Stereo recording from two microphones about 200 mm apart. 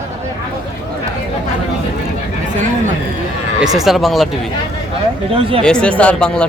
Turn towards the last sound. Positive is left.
turn(degrees=5)  # may be behind; listen again after turning